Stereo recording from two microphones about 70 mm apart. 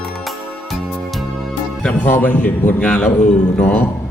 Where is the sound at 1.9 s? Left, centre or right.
Left.